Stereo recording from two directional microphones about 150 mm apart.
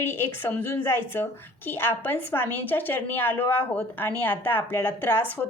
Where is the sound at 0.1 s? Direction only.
15° left (ahead or behind).